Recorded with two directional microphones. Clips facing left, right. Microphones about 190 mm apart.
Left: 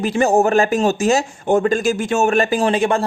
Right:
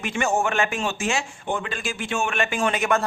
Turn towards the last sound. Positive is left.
turn(degrees=30)  # may be behind; listen again after turning